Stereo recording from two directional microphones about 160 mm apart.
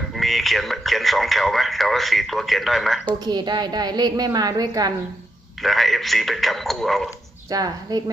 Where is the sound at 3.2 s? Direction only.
25° right (ahead or behind).